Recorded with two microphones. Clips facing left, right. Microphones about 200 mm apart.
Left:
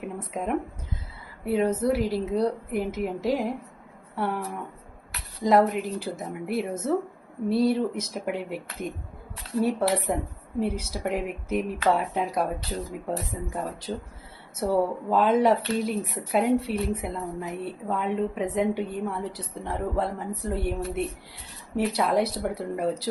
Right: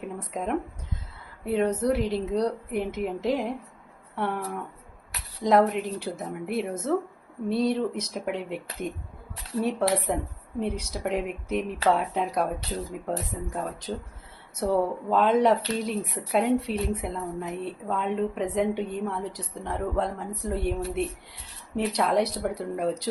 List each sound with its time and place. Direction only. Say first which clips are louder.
0.0 s a sound: left 1 dB; 5° left (ahead or behind)
1.5 s speech: left 1 dB; 5° left (ahead or behind)
10.1 s speech: left 1 dB; 5° left (ahead or behind)